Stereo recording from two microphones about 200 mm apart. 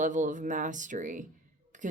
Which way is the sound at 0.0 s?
40° right (ahead or behind).